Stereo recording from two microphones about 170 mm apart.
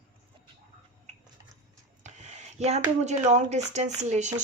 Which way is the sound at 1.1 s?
40° right (ahead or behind).